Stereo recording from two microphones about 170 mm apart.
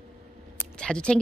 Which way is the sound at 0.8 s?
5° left (ahead or behind).